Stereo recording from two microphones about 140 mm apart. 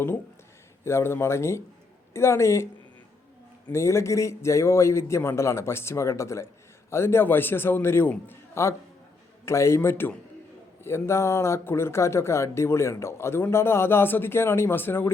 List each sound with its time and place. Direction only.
0.9 s a man's voice: 15° left (ahead or behind)
3.7 s a man's voice: 20° left (ahead or behind)